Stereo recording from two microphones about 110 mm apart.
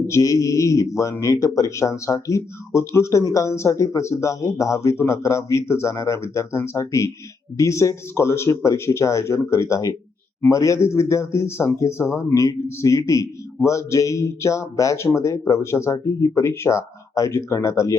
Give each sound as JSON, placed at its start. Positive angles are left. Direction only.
{"t": 0.1, "sound": "speech", "side_deg": 30}